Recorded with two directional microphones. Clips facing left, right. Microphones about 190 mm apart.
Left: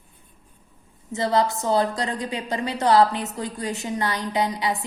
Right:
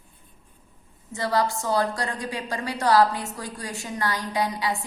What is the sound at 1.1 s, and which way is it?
A woman's voice, 20° left (ahead or behind).